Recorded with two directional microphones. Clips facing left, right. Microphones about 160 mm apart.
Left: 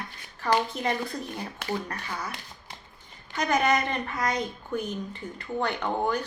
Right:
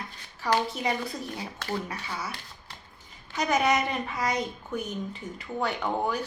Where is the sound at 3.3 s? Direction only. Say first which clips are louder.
Even; 5° right (ahead or behind).